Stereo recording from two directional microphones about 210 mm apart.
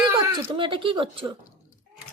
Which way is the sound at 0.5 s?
25° right (ahead or behind).